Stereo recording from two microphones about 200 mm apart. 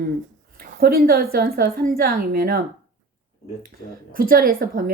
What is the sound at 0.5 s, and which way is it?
A woman's voice, 50° right (ahead or behind).